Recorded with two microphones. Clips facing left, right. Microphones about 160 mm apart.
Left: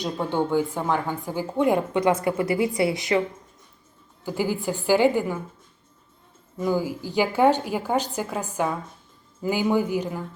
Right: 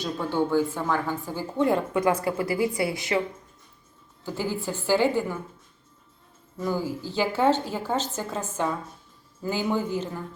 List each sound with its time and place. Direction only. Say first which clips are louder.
0.0 s a woman's voice: left 1 dB; 20° left (ahead or behind)
4.3 s a woman's voice: left 4 dB; 15° left (ahead or behind)
6.6 s a woman's voice: left 3 dB; 15° left (ahead or behind)